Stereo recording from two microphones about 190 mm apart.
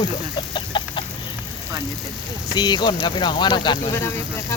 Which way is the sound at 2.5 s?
20° left (ahead or behind).